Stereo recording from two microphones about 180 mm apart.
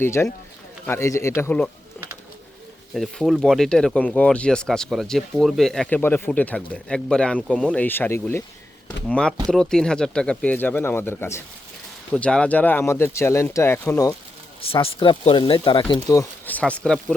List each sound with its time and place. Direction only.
0.0 s speech: 15° left (ahead or behind)
2.9 s speech: centre (ahead or behind)
14.6 s speech: 30° left (ahead or behind)
16.5 s speech: 5° left (ahead or behind)